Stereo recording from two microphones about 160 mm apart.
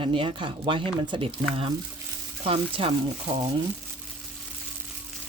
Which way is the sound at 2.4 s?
35° right (ahead or behind).